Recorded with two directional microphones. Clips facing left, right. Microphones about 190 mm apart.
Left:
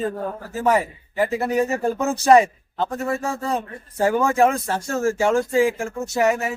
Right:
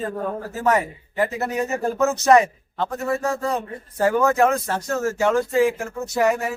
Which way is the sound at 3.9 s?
10° left (ahead or behind).